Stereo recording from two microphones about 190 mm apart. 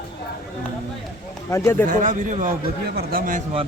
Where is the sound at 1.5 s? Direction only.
15° left (ahead or behind).